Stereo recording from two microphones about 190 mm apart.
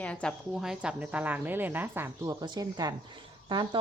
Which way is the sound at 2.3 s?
20° right (ahead or behind).